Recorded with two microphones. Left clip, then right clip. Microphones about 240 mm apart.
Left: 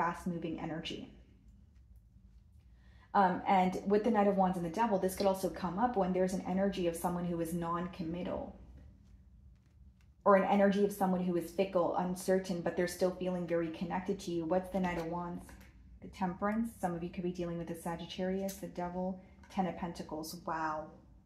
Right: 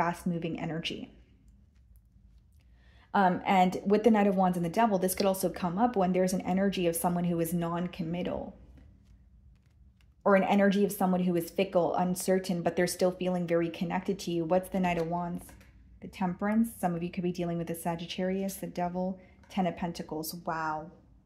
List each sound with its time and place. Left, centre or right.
0.0 s a woman's voice: right
3.1 s a woman's voice: right
10.2 s a woman's voice: right
16.1 s a woman's voice: right